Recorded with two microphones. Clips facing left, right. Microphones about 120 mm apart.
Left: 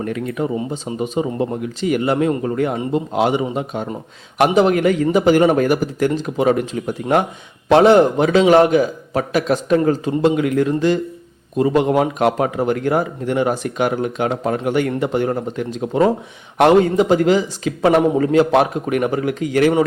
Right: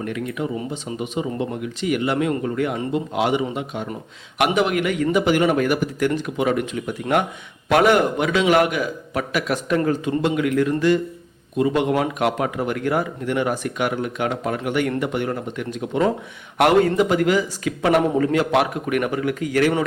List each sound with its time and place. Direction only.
0.0 s a man's voice: 40° left (ahead or behind)